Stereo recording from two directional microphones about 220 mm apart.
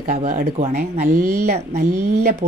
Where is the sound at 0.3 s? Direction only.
40° right (ahead or behind).